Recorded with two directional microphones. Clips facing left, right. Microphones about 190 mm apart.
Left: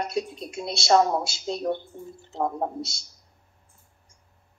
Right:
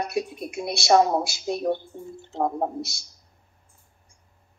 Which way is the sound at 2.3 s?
5° right (ahead or behind).